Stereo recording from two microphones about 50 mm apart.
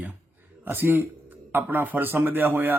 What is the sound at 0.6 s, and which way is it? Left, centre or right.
A man's voice, right.